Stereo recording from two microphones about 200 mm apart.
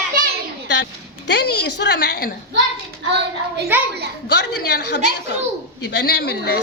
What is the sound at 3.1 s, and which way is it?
Child singing, 55° right (ahead or behind).